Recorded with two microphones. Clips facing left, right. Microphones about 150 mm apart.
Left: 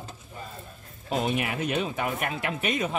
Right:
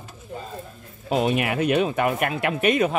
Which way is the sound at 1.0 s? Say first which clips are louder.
Right 5 dB; 75° right (ahead or behind).